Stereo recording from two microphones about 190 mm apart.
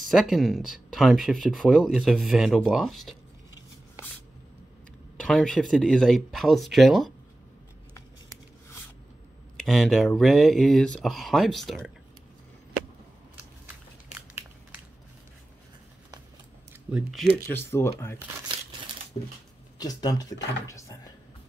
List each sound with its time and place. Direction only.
0.1 s speech: centre (ahead or behind)
5.2 s speech: centre (ahead or behind)
9.7 s speech: centre (ahead or behind)
16.9 s speech: centre (ahead or behind)
19.1 s a sound: 25° left (ahead or behind)
19.8 s speech: 20° left (ahead or behind)
20.6 s a sound: 15° left (ahead or behind)